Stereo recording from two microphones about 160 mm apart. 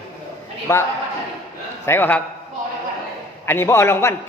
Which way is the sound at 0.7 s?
20° left (ahead or behind).